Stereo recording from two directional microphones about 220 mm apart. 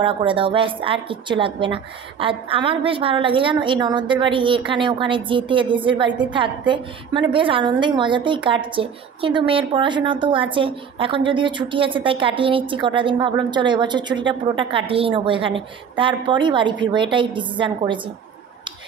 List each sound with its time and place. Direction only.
0.0 s a woman's voice: 20° right (ahead or behind)